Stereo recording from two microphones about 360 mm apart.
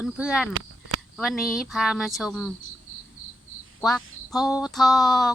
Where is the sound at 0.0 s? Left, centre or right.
Centre.